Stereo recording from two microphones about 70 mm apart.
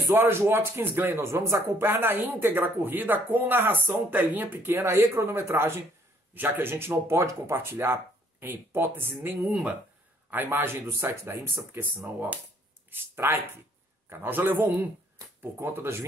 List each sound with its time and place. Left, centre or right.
0.1 s speech: right
12.9 s a man's voice: right